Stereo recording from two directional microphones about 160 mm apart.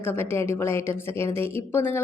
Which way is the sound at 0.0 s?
15° left (ahead or behind).